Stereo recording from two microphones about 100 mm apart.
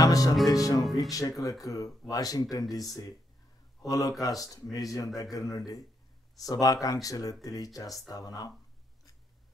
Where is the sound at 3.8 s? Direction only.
35° left (ahead or behind).